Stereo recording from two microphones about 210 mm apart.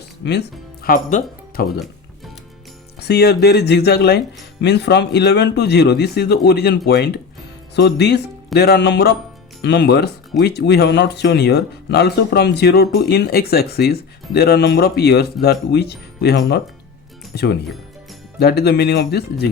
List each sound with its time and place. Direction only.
0.3 s speech: 50° left (ahead or behind)
3.0 s speech: 50° left (ahead or behind)